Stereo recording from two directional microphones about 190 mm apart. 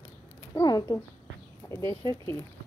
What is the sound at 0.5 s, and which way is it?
Speech, 20° left (ahead or behind).